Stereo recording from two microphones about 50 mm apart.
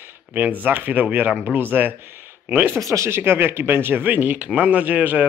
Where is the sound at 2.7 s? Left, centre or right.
Right.